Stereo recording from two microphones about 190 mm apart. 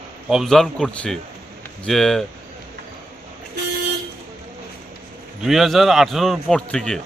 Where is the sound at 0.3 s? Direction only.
Centre (ahead or behind).